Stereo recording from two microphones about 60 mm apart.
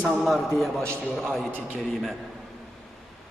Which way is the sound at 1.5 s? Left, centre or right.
Right.